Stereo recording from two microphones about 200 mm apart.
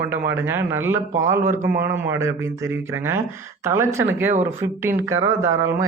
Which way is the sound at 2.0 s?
15° right (ahead or behind).